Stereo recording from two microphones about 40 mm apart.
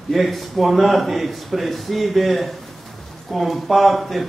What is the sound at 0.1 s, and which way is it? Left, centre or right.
A man's voice, centre.